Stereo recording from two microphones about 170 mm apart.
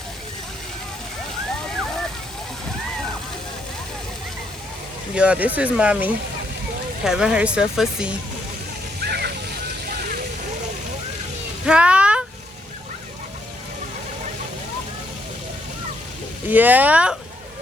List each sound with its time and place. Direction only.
5.1 s speech: 5° right (ahead or behind)
9.0 s slosh: 70° right (ahead or behind)
11.6 s a sound: 5° right (ahead or behind)
16.5 s speech: 10° right (ahead or behind)